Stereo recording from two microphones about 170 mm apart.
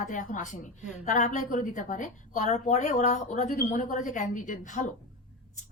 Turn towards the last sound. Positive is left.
turn(degrees=45)  # may be behind; listen again after turning